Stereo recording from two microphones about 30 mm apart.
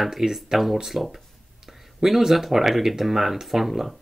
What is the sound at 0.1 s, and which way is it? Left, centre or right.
Speech, centre.